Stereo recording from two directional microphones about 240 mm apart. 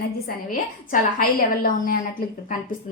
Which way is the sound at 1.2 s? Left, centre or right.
Left.